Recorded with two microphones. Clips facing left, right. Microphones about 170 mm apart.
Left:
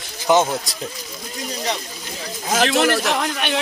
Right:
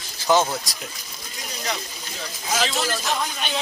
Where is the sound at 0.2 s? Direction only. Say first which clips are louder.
Left 3 dB; 20° left (ahead or behind).